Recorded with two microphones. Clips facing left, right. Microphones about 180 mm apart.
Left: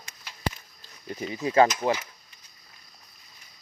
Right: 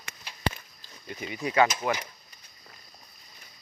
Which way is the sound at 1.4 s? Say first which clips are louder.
Left 3 dB; 30° left (ahead or behind).